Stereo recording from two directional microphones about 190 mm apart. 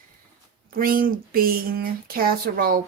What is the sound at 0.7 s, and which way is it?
Speech, 50° right (ahead or behind).